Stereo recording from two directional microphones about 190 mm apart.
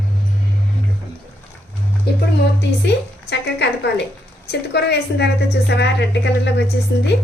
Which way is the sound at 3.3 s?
60° left (ahead or behind).